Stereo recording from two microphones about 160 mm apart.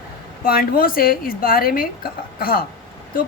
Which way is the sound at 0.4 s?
65° left (ahead or behind).